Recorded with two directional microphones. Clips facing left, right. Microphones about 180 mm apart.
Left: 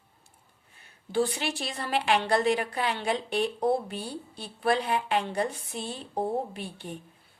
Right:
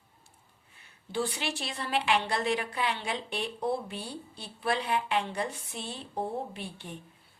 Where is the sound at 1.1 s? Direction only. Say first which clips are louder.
Left 5 dB; 45° left (ahead or behind).